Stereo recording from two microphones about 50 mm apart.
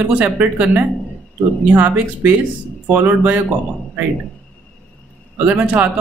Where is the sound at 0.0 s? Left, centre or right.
Right.